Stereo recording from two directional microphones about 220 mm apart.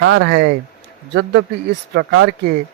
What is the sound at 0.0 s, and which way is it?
Speech, 55° right (ahead or behind).